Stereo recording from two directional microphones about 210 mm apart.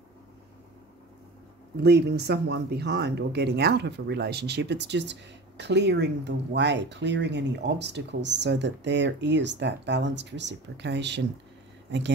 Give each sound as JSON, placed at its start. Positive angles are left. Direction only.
{"t": 1.8, "sound": "speech", "side_deg": -50}